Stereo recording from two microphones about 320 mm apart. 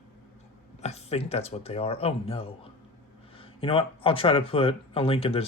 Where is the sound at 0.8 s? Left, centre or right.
Centre.